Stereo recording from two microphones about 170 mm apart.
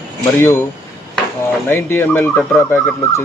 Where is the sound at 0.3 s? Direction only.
15° left (ahead or behind).